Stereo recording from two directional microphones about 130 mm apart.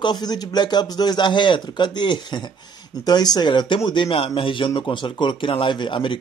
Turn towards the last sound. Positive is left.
turn(degrees=40)  # may be behind; listen again after turning